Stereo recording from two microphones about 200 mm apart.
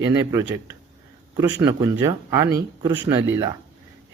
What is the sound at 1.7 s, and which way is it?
A man's voice, 20° right (ahead or behind).